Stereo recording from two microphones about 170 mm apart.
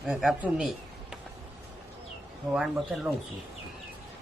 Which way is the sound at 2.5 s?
5° right (ahead or behind).